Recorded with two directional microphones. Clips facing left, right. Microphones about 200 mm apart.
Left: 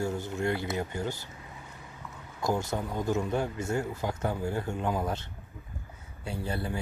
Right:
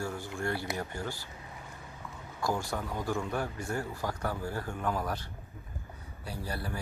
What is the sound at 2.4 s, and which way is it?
Speech, 20° left (ahead or behind).